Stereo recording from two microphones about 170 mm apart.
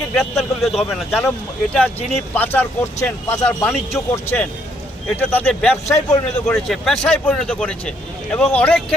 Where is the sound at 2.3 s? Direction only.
10° left (ahead or behind).